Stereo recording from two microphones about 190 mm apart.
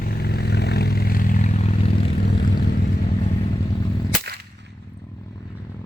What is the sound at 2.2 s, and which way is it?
Vehicle, 55° left (ahead or behind).